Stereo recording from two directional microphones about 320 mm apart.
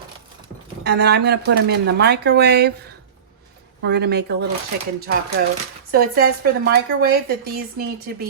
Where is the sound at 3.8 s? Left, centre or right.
Right.